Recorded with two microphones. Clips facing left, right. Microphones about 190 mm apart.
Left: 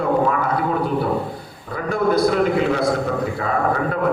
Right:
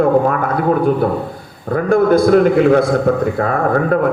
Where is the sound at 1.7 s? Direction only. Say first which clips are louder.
Right 7 dB; 50° right (ahead or behind).